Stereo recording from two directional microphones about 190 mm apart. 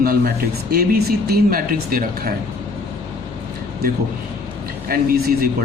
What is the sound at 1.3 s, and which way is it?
Speech, 50° right (ahead or behind).